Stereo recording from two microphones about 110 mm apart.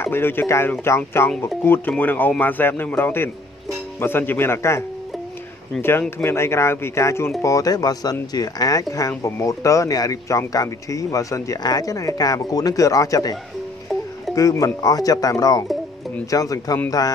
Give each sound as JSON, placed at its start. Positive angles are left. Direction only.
{"t": 0.0, "sound": "speech", "side_deg": 20}